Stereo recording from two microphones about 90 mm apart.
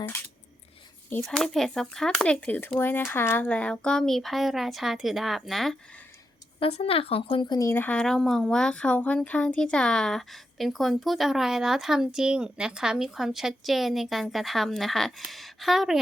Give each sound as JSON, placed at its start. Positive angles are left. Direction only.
{"t": 0.0, "sound": "a sound", "side_deg": 25}
{"t": 1.2, "sound": "speech", "side_deg": 5}
{"t": 6.6, "sound": "speech", "side_deg": 90}
{"t": 7.4, "sound": "speech", "side_deg": 50}
{"t": 7.7, "sound": "speech", "side_deg": 25}
{"t": 7.9, "sound": "speech", "side_deg": 5}